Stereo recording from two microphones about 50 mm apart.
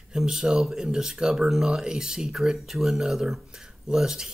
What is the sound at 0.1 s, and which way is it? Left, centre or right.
Speech, centre.